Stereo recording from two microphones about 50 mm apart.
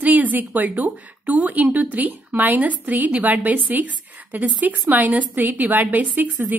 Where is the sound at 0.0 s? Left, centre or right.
Right.